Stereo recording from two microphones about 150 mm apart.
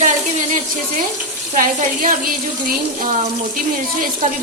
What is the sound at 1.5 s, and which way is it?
Speech, 65° right (ahead or behind).